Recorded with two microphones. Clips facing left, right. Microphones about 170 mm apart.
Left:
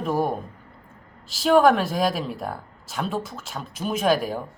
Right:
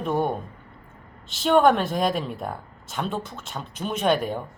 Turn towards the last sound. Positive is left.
turn(degrees=5)  # may be behind; listen again after turning